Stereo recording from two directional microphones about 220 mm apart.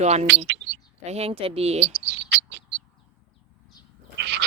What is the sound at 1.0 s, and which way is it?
Speech, 30° right (ahead or behind).